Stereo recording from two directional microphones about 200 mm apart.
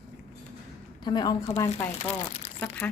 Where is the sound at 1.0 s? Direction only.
20° left (ahead or behind).